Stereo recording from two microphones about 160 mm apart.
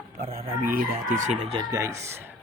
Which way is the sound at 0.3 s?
60° right (ahead or behind).